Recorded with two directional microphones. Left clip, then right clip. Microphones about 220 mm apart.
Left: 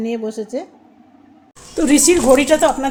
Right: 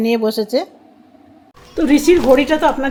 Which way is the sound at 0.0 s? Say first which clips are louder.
Right 7 dB; 10° right (ahead or behind).